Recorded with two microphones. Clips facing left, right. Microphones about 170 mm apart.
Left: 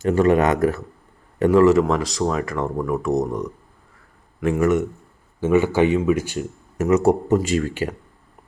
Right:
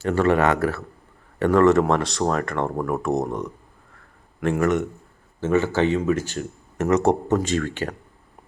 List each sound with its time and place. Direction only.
0.0 s a man's voice: 15° left (ahead or behind)